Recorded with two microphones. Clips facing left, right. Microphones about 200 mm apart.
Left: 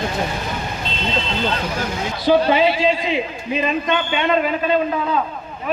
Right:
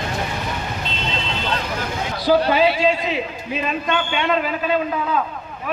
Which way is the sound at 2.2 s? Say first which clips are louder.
Left 1 dB; 5° right (ahead or behind).